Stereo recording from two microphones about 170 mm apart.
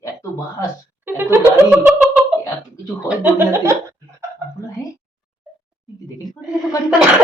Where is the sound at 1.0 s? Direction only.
10° right (ahead or behind).